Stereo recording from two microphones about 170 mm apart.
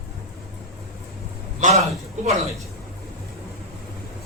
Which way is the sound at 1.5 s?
45° right (ahead or behind).